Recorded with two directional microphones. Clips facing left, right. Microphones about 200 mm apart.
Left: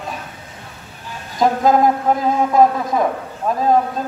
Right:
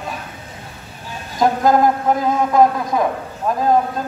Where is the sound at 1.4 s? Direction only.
Centre (ahead or behind).